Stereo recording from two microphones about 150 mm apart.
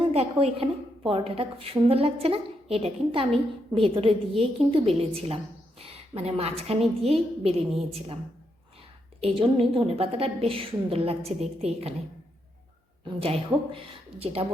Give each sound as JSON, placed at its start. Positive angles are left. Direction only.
{"t": 0.0, "sound": "a woman's voice", "side_deg": -40}
{"t": 9.2, "sound": "a woman's voice", "side_deg": -40}
{"t": 13.1, "sound": "a woman's voice", "side_deg": -40}